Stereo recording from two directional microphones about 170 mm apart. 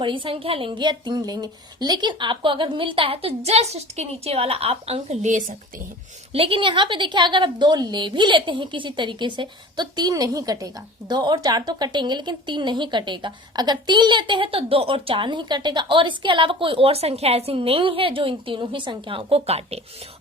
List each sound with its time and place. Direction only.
0.0 s speech: 30° right (ahead or behind); by 5.5 s 45° right (ahead or behind)
6.3 s a woman's voice: 35° right (ahead or behind)